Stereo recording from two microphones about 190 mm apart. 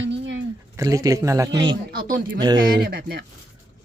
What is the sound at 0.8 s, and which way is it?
Speech, 20° right (ahead or behind).